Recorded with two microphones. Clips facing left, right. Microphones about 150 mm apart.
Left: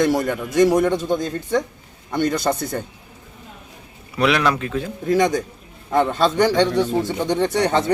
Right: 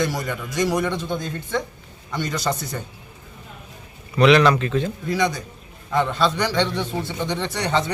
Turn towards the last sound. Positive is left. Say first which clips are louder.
# left 5 dB
turn(degrees=50)  # may be behind; listen again after turning